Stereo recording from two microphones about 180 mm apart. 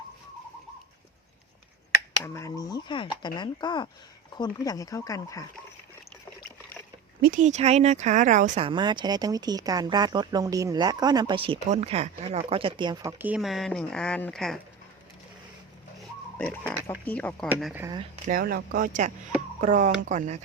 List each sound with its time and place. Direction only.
2.2 s speech: 15° left (ahead or behind)
7.2 s speech: 50° right (ahead or behind)
8.6 s speech: 25° right (ahead or behind); by 14.6 s 5° left (ahead or behind)
16.4 s speech: 5° left (ahead or behind)
17.5 s speech: 5° right (ahead or behind)
18.3 s speech: 55° right (ahead or behind)